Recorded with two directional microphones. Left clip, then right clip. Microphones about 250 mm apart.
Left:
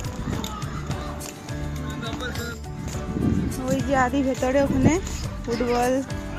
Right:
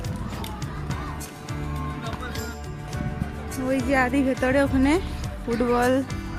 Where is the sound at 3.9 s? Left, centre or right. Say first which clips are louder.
Left 1 dB; centre.